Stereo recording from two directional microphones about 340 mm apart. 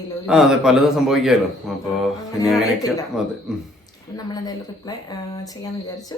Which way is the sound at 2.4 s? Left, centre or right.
Centre.